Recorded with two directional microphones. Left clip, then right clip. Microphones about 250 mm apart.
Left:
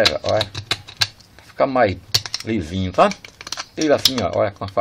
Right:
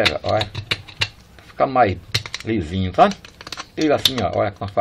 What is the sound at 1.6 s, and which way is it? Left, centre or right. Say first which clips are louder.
Speech: even; centre.